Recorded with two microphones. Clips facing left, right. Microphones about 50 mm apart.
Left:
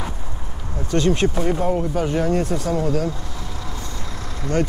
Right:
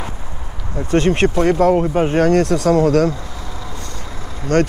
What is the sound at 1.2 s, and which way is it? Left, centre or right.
Speech, right.